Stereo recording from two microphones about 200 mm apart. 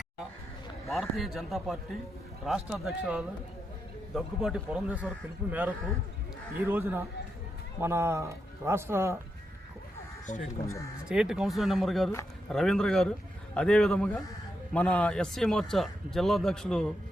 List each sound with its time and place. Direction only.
0.9 s a man's voice: centre (ahead or behind)
10.5 s speech: 15° left (ahead or behind)
11.1 s a man's voice: 5° right (ahead or behind)